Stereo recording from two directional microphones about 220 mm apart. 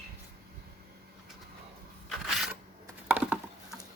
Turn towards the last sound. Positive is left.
turn(degrees=-5)  # may be behind; listen again after turning